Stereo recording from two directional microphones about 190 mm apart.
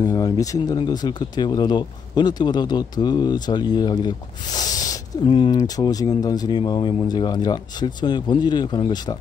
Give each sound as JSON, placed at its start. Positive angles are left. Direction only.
{"t": 0.0, "sound": "speech", "side_deg": 20}